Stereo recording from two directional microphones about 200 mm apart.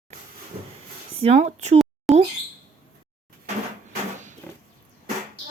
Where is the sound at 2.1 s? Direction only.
Centre (ahead or behind).